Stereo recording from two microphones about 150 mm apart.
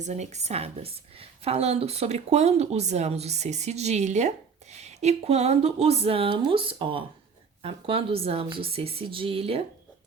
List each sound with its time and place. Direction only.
0.0 s a woman's voice: 50° right (ahead or behind)